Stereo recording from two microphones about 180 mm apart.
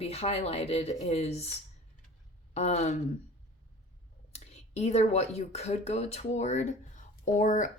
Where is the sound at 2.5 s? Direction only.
40° left (ahead or behind).